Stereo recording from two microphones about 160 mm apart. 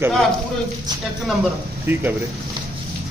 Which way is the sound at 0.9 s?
25° right (ahead or behind).